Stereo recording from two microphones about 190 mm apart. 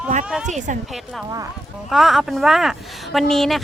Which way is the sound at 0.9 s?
Centre (ahead or behind).